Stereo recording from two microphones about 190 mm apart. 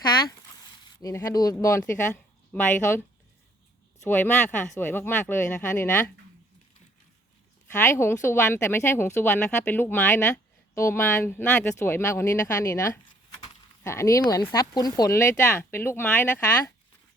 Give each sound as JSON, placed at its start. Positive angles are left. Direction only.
{"t": 0.0, "sound": "a sound", "side_deg": 20}
{"t": 1.0, "sound": "speech", "side_deg": 20}
{"t": 4.0, "sound": "speech", "side_deg": 10}
{"t": 7.7, "sound": "speech", "side_deg": 15}